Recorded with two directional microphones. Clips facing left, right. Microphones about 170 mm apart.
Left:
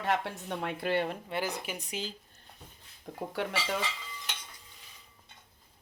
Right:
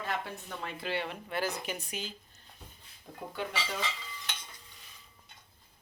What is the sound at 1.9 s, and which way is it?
Speech, 30° left (ahead or behind).